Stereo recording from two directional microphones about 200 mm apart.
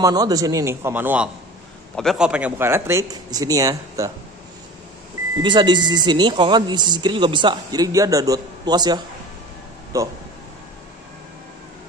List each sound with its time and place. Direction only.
0.0 s speech: 20° right (ahead or behind)
5.4 s speech: 20° right (ahead or behind)